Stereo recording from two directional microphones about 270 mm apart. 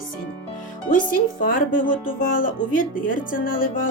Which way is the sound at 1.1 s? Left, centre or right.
Left.